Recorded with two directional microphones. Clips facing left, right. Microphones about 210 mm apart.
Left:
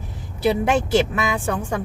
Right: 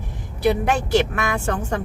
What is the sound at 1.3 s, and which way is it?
Speech, 10° left (ahead or behind).